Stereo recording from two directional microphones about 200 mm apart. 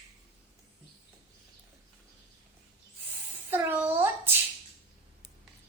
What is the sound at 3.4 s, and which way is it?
Child singing, 10° right (ahead or behind).